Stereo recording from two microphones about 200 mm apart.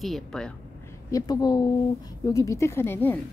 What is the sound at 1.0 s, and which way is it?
Speech, 15° left (ahead or behind).